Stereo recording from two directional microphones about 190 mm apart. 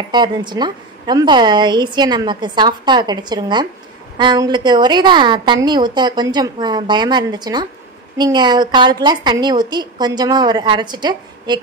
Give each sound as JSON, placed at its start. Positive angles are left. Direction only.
{"t": 0.1, "sound": "a woman's voice", "side_deg": -25}